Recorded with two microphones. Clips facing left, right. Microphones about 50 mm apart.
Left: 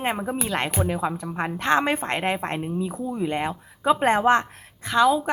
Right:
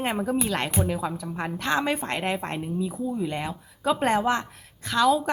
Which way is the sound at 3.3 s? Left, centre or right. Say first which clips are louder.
Left 5 dB; left.